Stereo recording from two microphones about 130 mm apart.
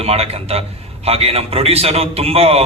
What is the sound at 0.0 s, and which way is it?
A man's voice, 50° right (ahead or behind).